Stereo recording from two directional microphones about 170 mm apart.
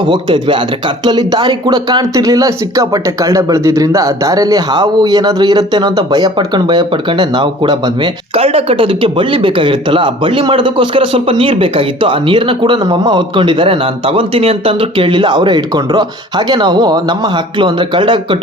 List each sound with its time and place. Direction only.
0.0 s speech: 30° right (ahead or behind)